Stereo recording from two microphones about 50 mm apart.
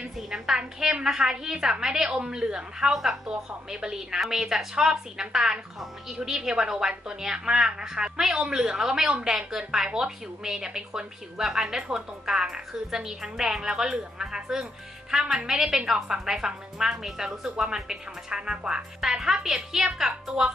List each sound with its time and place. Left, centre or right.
0.0 s a woman's voice: centre
2.9 s a woman's voice: centre